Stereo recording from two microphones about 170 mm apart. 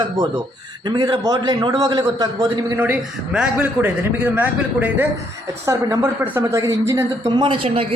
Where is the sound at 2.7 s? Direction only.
10° right (ahead or behind).